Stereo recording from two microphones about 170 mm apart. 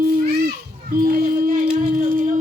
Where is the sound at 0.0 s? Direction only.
65° right (ahead or behind).